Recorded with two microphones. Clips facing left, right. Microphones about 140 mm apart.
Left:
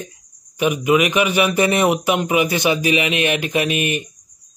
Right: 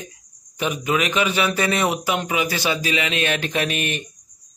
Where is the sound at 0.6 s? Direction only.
15° left (ahead or behind).